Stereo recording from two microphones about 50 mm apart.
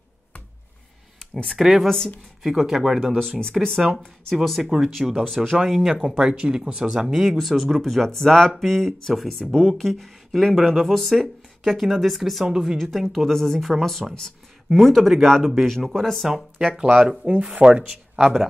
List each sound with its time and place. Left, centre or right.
1.6 s speech: centre
3.2 s speech: centre
4.6 s speech: centre
5.5 s speech: centre
16.5 s speech: centre
17.2 s speech: right; by 18.5 s centre